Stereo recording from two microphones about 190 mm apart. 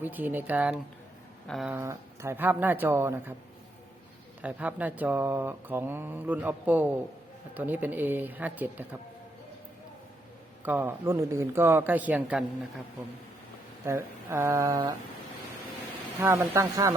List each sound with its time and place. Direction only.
0.0 s speech: 10° right (ahead or behind)
1.7 s speech: 15° right (ahead or behind)
4.4 s speech: 10° right (ahead or behind)
10.6 s speech: 10° right (ahead or behind)
13.8 s speech: 10° right (ahead or behind)
16.2 s speech: 15° right (ahead or behind)